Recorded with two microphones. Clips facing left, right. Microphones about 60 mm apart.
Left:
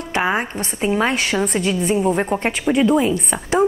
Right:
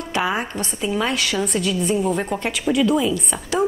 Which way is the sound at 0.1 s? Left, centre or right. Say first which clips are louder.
Left 3 dB; left.